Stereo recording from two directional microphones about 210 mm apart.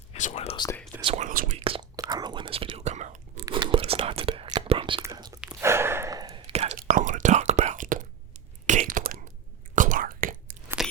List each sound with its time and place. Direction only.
0.1 s speech: 35° left (ahead or behind)
1.0 s whispering: 30° right (ahead or behind)
1.3 s whispering: 40° right (ahead or behind)
1.5 s whispering: 25° right (ahead or behind)
3.4 s whispering: 25° right (ahead or behind)
5.4 s a sound: 10° right (ahead or behind)
6.5 s whispering: 30° right (ahead or behind)
6.7 s whispering: 40° right (ahead or behind)